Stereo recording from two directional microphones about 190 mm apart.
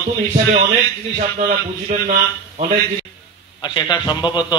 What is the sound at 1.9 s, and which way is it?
Speech, 40° right (ahead or behind).